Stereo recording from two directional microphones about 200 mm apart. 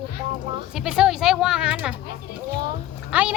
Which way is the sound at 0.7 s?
5° right (ahead or behind).